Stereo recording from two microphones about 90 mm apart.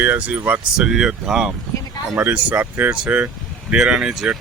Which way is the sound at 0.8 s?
5° right (ahead or behind).